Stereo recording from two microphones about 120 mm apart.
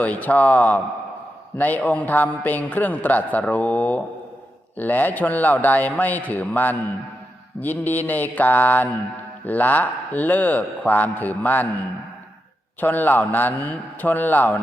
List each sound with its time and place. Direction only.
0.0 s a man's voice: 15° left (ahead or behind)
12.8 s a man's voice: 15° left (ahead or behind)